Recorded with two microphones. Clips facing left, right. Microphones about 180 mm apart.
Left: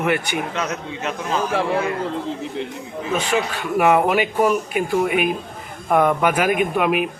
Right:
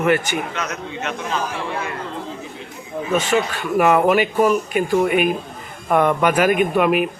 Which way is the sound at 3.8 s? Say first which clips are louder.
Right 1 dB; 15° left (ahead or behind).